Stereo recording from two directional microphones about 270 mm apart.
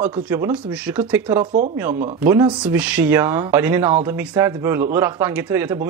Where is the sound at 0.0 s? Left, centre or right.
Centre.